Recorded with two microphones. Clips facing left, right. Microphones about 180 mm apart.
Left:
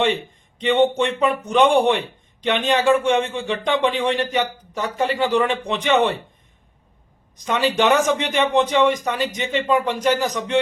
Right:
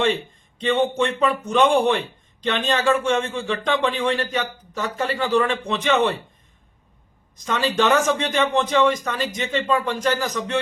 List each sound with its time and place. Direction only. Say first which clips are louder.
0.6 s speech: left 3 dB; 15° left (ahead or behind)
7.4 s speech: left 2 dB; 15° left (ahead or behind)